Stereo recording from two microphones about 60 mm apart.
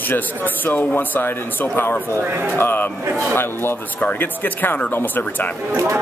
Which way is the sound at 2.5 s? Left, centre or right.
Left.